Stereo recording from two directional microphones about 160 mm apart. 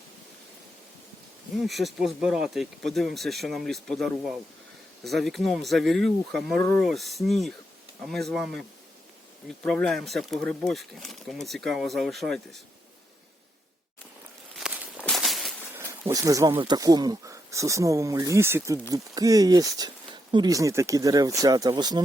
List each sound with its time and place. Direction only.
1.5 s speech: centre (ahead or behind)
9.6 s speech: 5° left (ahead or behind)
14.6 s walk: 5° right (ahead or behind)
14.9 s a sound: 5° left (ahead or behind)
15.7 s a sound: 15° right (ahead or behind)
16.6 s speech: 25° right (ahead or behind)